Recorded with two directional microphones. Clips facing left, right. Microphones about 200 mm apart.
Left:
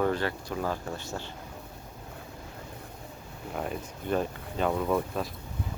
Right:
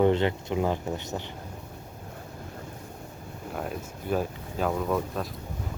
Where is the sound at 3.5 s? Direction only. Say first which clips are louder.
Even; centre (ahead or behind).